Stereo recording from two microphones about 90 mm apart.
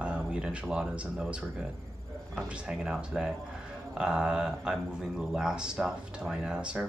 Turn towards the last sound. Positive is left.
turn(degrees=-10)  # may be behind; listen again after turning